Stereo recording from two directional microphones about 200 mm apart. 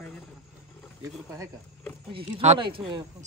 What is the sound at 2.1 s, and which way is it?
Speech, 30° right (ahead or behind).